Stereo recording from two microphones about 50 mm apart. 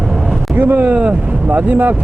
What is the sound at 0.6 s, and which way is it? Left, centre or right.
Speech, right.